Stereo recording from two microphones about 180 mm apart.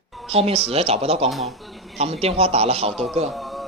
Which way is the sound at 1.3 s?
Centre (ahead or behind).